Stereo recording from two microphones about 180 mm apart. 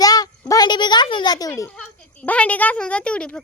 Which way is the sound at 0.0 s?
20° left (ahead or behind).